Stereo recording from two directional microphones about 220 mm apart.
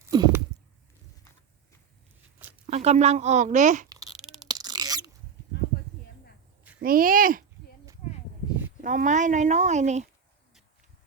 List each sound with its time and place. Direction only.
0.0 s a sound: 15° right (ahead or behind)
2.6 s speech: 30° right (ahead or behind)
3.8 s a sound: 15° right (ahead or behind)
4.4 s rodents: 20° right (ahead or behind)
6.7 s speech: 40° right (ahead or behind)
8.8 s speech: 35° right (ahead or behind)